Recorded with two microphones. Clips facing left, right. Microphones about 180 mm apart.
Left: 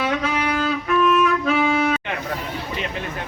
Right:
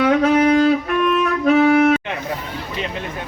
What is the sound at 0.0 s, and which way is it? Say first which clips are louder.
Music: right 8 dB; 60° right (ahead or behind).